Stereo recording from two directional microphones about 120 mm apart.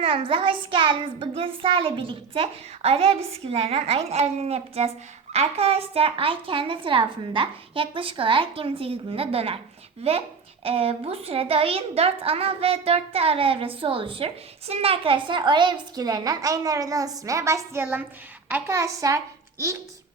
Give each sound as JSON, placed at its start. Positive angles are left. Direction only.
{"t": 0.0, "sound": "a woman's voice", "side_deg": -45}
{"t": 18.4, "sound": "a woman's voice", "side_deg": -15}
{"t": 18.8, "sound": "a child's voice", "side_deg": -25}